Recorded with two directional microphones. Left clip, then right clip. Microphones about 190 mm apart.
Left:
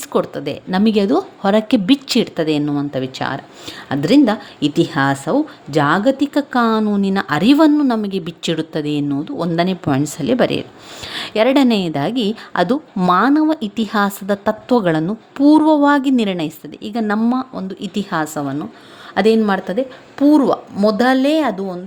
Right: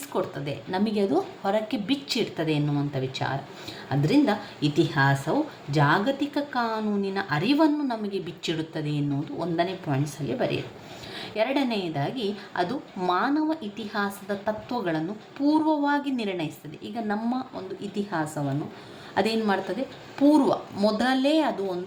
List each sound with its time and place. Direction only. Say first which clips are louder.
0.1 s a woman's voice: left 10 dB; 50° left (ahead or behind)